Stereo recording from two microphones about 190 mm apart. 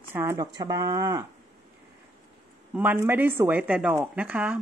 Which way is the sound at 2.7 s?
10° right (ahead or behind).